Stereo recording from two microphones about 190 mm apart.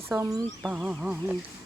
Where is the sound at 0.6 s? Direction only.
5° right (ahead or behind).